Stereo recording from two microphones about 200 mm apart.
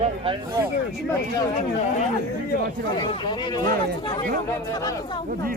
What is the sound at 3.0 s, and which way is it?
Speech, 25° left (ahead or behind).